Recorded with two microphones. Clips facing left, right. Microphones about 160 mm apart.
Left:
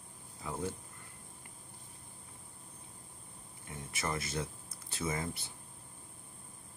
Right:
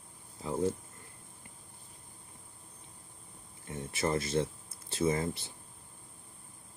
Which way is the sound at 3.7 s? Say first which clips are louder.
Right 7 dB; 30° right (ahead or behind).